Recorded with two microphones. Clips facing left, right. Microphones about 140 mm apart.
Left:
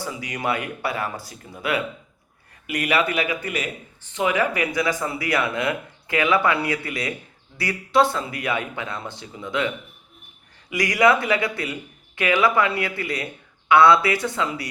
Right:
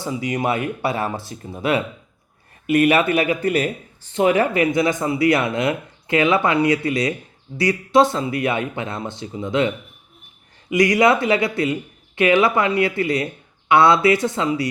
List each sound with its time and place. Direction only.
0.0 s speech: 25° right (ahead or behind)